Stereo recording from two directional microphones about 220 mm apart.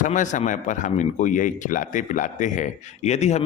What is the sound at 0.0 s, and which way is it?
Speech, 35° left (ahead or behind).